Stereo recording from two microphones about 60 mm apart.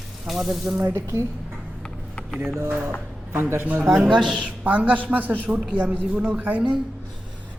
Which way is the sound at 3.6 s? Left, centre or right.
Right.